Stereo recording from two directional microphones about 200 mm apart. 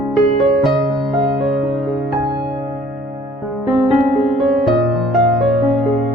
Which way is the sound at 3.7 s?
5° right (ahead or behind).